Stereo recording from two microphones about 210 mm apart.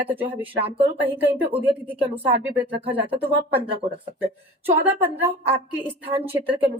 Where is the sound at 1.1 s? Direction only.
10° right (ahead or behind).